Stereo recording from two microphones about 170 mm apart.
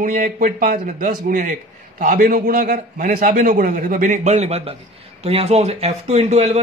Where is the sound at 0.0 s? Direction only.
50° right (ahead or behind).